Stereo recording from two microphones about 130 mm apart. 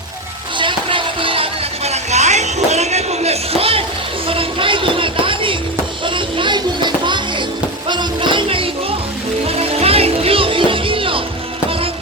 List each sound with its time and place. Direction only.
0.6 s music: 40° right (ahead or behind)